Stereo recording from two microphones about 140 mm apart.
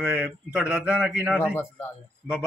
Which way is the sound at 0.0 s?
10° right (ahead or behind).